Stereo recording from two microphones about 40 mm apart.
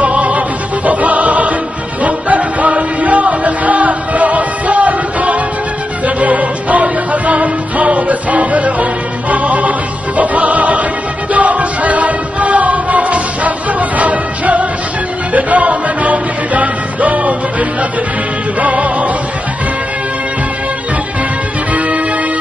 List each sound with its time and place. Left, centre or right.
0.0 s music: right
21.7 s music: right